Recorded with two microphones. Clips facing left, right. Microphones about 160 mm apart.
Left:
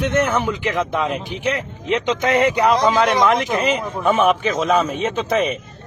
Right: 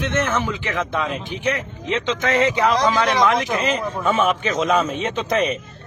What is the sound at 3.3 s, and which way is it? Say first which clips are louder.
Speech: left 2 dB; 35° left (ahead or behind).